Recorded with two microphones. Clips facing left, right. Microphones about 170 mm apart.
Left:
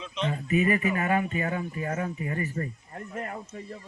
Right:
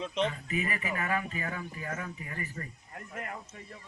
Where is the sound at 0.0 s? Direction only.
55° right (ahead or behind).